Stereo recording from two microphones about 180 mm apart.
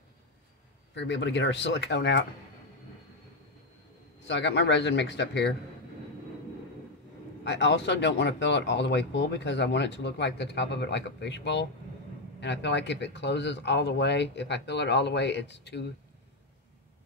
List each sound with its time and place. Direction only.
0.9 s speech: 80° left
4.3 s speech: 80° left
7.4 s speech: 75° left (ahead or behind)